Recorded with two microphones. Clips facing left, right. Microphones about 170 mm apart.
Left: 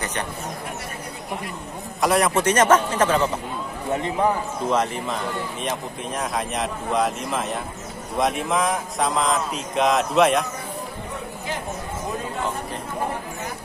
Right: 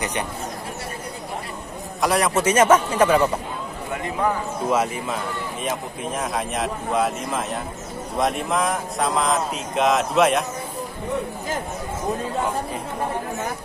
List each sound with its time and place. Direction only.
2.0 s a man's voice: centre (ahead or behind)
3.9 s a man's voice: 30° left (ahead or behind)
4.6 s a man's voice: 5° right (ahead or behind)